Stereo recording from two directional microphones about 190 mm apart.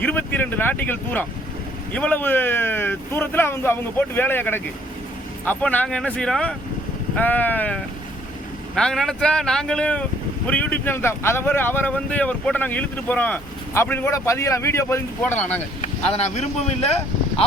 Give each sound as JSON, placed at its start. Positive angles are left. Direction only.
{"t": 0.0, "sound": "speech", "side_deg": 10}
{"t": 15.8, "sound": "speech", "side_deg": 35}